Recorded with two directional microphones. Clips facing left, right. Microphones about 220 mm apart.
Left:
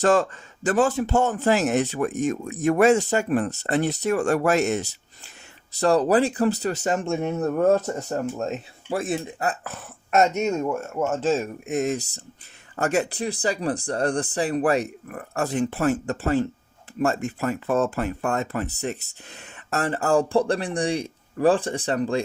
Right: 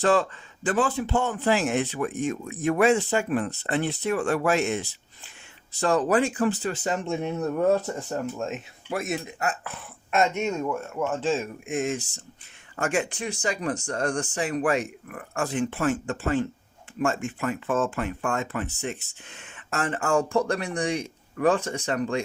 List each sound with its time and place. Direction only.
0.0 s a man's voice: 45° left (ahead or behind)